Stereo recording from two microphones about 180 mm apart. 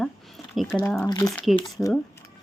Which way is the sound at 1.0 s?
20° left (ahead or behind).